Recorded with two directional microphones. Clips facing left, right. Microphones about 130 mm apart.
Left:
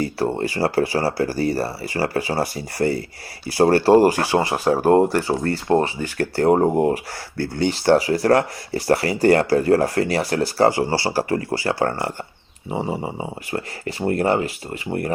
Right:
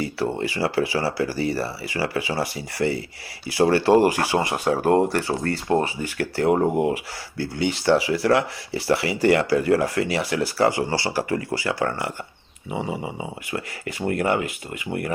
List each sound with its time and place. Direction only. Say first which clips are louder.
0.0 s speech: left 3 dB; 40° left (ahead or behind)